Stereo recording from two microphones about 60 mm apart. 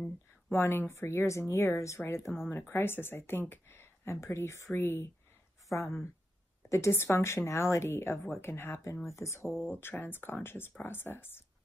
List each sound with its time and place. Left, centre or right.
0.5 s speech: left
0.9 s speech: left
2.0 s speech: left
5.7 s speech: left
9.0 s speech: left
9.7 s speech: left